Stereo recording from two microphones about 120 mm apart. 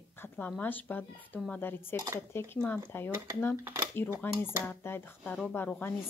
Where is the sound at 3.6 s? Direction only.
20° right (ahead or behind).